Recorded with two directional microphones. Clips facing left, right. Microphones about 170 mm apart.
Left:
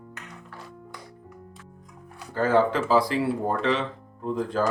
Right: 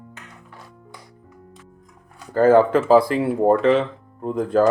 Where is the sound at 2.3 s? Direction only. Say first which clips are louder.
Right 7 dB; 50° right (ahead or behind).